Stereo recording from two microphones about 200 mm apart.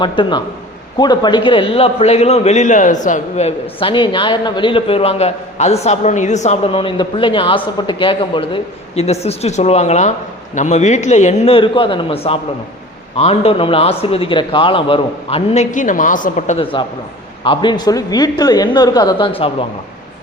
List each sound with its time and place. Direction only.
0.0 s a man's voice: 25° left (ahead or behind); by 16.6 s 40° left (ahead or behind)
17.4 s a man's voice: 25° left (ahead or behind)